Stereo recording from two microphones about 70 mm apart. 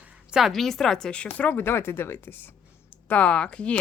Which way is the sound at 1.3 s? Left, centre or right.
Left.